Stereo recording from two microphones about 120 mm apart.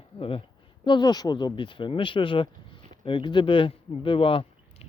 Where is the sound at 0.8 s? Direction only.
40° left (ahead or behind).